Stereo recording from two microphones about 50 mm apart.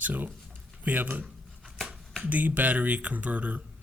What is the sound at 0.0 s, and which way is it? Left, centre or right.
Speech, right.